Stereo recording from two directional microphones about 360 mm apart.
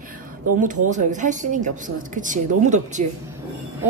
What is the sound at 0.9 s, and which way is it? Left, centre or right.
A woman's voice, right.